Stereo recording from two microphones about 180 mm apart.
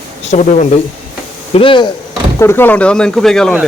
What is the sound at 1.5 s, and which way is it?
Speech, 30° left (ahead or behind).